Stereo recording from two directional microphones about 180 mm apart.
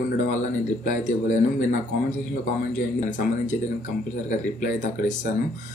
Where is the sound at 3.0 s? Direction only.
45° left (ahead or behind).